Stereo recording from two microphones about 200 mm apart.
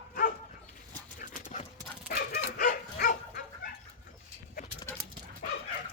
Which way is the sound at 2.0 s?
45° left (ahead or behind).